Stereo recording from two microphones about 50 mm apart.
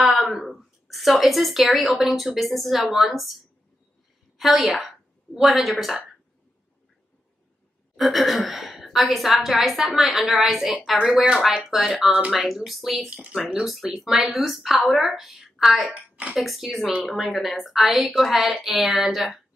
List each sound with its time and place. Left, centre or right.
0.5 s speech: centre
4.4 s speech: centre
7.9 s speech: centre
11.9 s speech: centre
12.4 s speech: centre